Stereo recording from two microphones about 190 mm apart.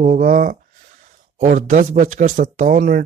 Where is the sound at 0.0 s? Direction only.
45° right (ahead or behind).